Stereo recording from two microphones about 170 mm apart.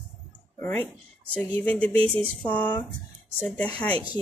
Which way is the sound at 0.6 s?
10° left (ahead or behind).